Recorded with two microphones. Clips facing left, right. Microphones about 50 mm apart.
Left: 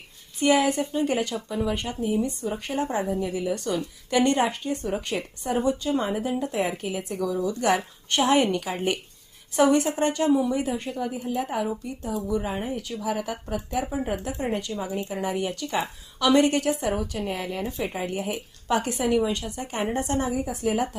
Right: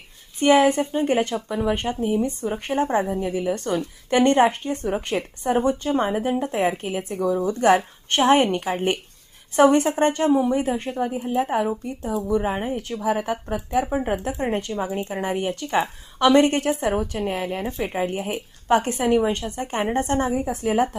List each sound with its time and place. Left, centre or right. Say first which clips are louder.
0.3 s speech: right 5 dB; right
14.8 s speech: right 3 dB; right
15.1 s speech: right 3 dB; right